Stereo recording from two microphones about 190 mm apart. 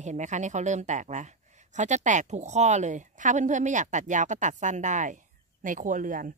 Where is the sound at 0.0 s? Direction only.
40° right (ahead or behind).